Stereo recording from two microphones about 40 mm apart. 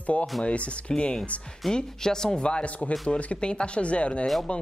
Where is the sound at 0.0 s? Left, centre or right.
Left.